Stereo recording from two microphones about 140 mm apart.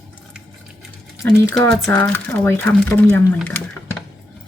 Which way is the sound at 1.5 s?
5° left (ahead or behind).